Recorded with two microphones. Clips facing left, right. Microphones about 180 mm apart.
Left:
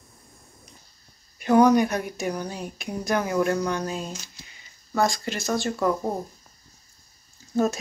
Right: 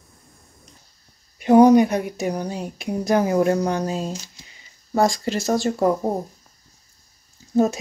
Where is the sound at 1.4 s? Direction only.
25° right (ahead or behind).